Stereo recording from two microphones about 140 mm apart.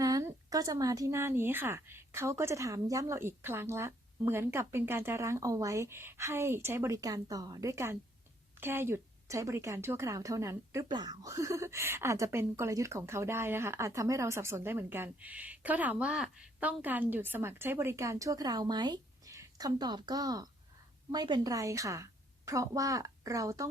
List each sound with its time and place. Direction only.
0.0 s a woman's voice: 25° right (ahead or behind)